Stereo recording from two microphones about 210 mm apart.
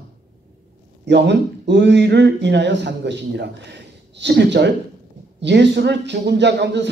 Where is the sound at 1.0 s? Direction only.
55° right (ahead or behind).